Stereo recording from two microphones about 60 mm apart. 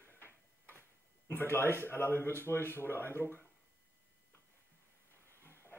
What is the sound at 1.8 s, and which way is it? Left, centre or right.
Speech, left.